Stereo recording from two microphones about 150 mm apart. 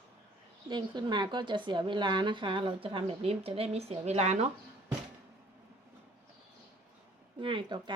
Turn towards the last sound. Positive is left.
turn(degrees=-30)  # may be behind; listen again after turning